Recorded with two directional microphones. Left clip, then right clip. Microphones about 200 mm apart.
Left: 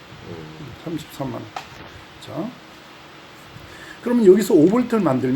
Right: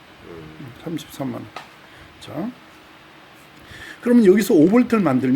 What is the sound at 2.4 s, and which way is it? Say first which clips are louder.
Speech: even; 50° right (ahead or behind).